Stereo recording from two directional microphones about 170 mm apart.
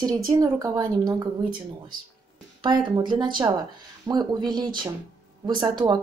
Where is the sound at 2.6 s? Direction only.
25° right (ahead or behind).